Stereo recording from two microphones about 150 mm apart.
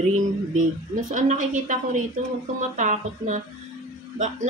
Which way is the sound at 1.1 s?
60° right (ahead or behind).